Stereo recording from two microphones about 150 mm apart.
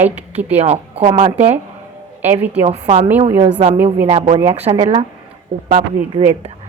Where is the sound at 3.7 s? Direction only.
15° right (ahead or behind).